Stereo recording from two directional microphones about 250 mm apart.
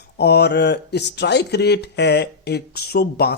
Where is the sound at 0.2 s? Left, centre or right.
Left.